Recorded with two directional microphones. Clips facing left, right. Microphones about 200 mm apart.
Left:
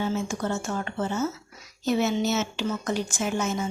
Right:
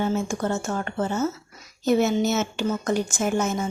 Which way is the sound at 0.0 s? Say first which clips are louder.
Right 3 dB; 50° right (ahead or behind).